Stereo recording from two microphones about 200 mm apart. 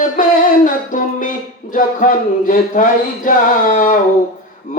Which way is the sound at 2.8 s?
40° left (ahead or behind).